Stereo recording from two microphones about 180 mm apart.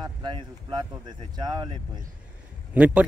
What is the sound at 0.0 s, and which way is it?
Speech, 25° right (ahead or behind).